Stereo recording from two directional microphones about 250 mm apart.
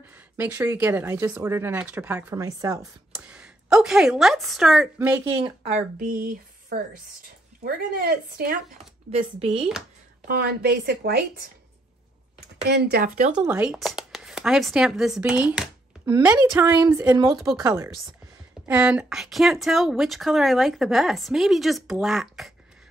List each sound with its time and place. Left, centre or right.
0.0 s a woman's voice: centre
5.4 s speech: right
5.9 s a woman's voice: right
9.1 s speech: right
10.2 s a woman's voice: right
12.6 s a woman's voice: right
13.5 s a woman's voice: centre